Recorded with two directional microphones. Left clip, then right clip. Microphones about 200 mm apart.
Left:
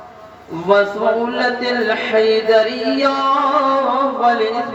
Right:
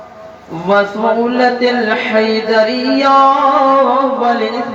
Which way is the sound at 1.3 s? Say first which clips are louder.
Right 5 dB; 20° left (ahead or behind).